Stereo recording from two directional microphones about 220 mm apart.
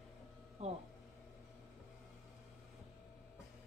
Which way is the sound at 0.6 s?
30° right (ahead or behind).